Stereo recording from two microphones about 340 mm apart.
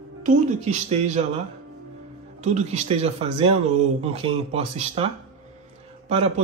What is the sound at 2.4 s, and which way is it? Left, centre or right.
A man's voice, centre.